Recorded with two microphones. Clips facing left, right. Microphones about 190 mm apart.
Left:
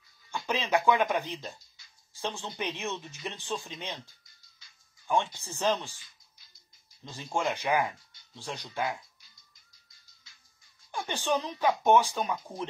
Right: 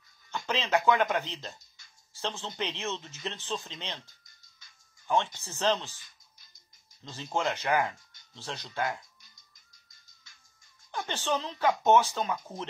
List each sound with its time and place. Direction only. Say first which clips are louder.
0.5 s speech: even; 15° left (ahead or behind)
5.0 s speech: even; 15° left (ahead or behind)
5.9 s a sound: right 1 dB; 50° right (ahead or behind)
7.0 s speech: even; 15° left (ahead or behind)
10.9 s speech: left 1 dB; 15° left (ahead or behind)